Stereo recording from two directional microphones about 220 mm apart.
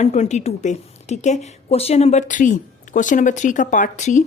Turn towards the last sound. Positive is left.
turn(degrees=35)  # may be behind; listen again after turning